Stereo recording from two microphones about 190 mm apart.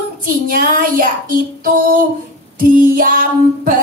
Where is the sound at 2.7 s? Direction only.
45° right (ahead or behind).